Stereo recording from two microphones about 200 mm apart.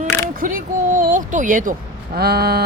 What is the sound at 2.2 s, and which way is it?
Vehicle, 50° right (ahead or behind).